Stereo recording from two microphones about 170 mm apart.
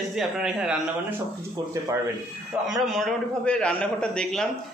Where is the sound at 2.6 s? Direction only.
Centre (ahead or behind).